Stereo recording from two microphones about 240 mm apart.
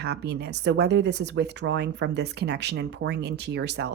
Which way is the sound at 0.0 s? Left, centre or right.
Right.